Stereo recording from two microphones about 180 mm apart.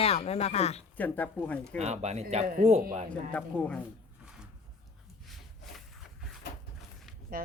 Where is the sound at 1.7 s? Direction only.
40° right (ahead or behind).